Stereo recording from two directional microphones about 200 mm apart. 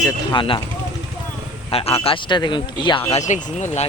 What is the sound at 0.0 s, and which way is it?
Speech, 20° left (ahead or behind).